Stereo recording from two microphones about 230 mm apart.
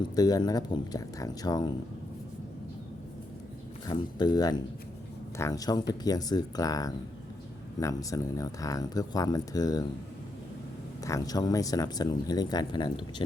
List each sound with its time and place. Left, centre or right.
0.0 s speech: centre
3.8 s speech: centre
11.0 s speech: centre